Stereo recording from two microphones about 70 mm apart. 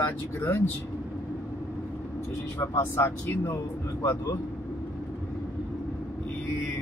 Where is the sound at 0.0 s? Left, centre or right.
Left.